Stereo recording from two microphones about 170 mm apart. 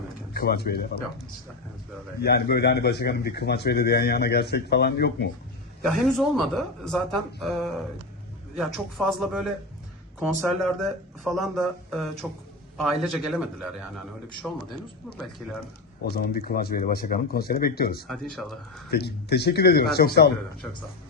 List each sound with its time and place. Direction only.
0.3 s speech: 65° left (ahead or behind)
2.2 s speech: 70° left (ahead or behind)
5.9 s speech: centre (ahead or behind)
16.0 s speech: 65° left (ahead or behind)
18.1 s speech: centre (ahead or behind)
18.9 s speech: 70° left (ahead or behind)